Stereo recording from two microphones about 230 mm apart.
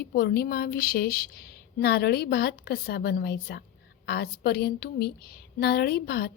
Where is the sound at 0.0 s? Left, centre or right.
Left.